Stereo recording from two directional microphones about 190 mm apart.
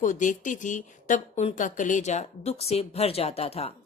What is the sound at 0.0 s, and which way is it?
Speech, 40° left (ahead or behind).